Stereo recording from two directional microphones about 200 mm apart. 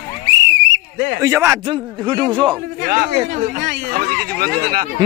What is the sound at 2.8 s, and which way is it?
Speech, 45° right (ahead or behind).